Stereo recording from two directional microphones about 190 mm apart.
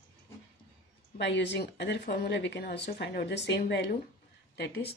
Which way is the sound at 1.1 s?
65° left (ahead or behind).